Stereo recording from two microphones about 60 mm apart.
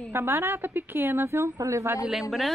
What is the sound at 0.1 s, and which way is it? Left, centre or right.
A woman's voice, right.